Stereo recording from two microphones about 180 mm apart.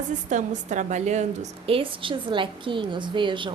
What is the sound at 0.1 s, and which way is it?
Speech, 40° right (ahead or behind).